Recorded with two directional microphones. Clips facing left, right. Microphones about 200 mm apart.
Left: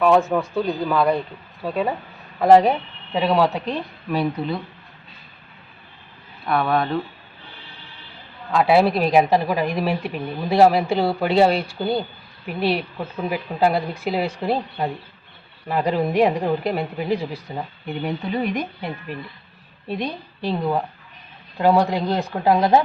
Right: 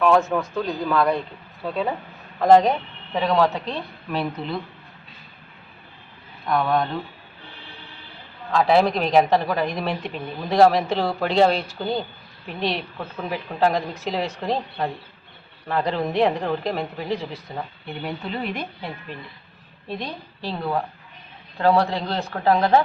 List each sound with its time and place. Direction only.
0.6 s speech: 10° left (ahead or behind)
6.4 s speech: 5° left (ahead or behind)
8.5 s speech: 5° left (ahead or behind)